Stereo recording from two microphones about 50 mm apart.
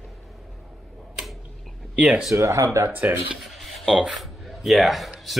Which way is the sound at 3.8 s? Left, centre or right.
Centre.